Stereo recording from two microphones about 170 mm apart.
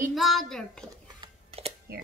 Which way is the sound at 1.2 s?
35° right (ahead or behind).